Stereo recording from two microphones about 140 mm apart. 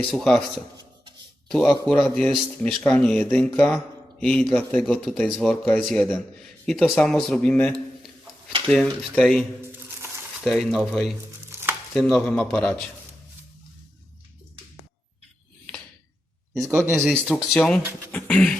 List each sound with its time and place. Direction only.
0.1 s speech: 5° left (ahead or behind)
1.5 s a man's voice: 5° left (ahead or behind)
11.4 s a sound: 15° right (ahead or behind)
11.9 s speech: 5° left (ahead or behind)
16.9 s speech: centre (ahead or behind)
18.1 s beatboxing: 5° left (ahead or behind)